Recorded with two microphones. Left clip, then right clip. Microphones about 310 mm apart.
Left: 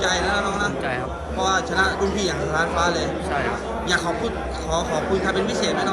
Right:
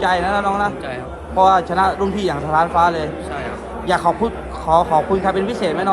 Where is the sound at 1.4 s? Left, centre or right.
Centre.